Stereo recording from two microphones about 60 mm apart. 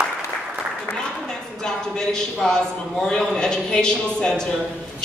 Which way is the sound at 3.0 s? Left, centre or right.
Centre.